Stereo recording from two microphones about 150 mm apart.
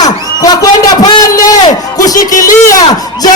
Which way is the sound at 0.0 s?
25° left (ahead or behind).